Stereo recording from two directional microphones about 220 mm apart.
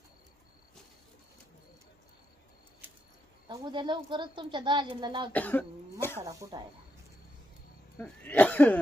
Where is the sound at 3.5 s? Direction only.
20° right (ahead or behind).